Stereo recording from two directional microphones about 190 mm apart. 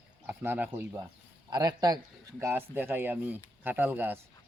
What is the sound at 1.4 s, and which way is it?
A man's voice, 20° right (ahead or behind).